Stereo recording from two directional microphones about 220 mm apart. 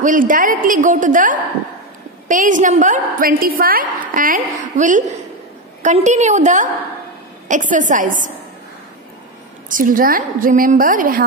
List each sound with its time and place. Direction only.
0.0 s a woman's voice: 35° right (ahead or behind)
9.7 s a woman's voice: 40° right (ahead or behind)